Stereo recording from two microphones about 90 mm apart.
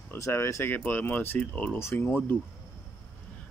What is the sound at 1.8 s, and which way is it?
Speech, 25° left (ahead or behind).